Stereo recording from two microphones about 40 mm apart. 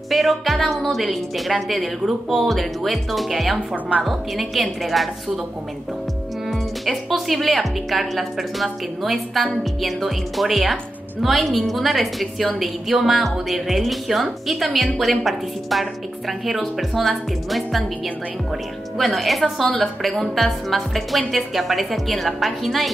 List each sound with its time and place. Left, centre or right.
0.1 s a woman's voice: centre
6.5 s a woman's voice: centre
18.9 s a woman's voice: centre